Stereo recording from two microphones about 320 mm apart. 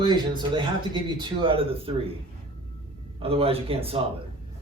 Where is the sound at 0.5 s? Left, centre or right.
Centre.